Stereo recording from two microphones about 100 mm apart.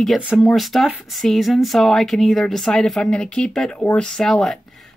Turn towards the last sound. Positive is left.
turn(degrees=5)  # may be behind; listen again after turning